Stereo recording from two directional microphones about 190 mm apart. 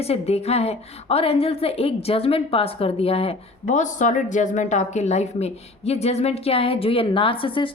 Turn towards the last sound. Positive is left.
turn(degrees=25)  # may be behind; listen again after turning